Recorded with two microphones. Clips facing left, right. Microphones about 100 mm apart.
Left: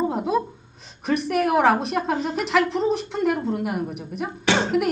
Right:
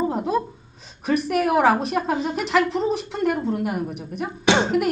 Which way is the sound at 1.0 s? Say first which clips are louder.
Right 1 dB; centre (ahead or behind).